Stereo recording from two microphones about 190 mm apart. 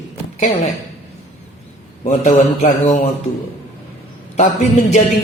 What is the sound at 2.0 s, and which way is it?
Speech, 40° left (ahead or behind).